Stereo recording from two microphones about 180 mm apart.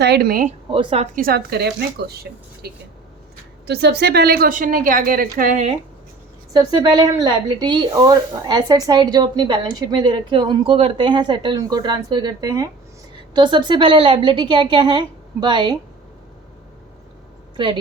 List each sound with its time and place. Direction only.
0.0 s speech: 65° right (ahead or behind)
0.7 s speech: 30° right (ahead or behind)
1.1 s a woman's voice: 55° right (ahead or behind)
6.5 s speech: 20° right (ahead or behind)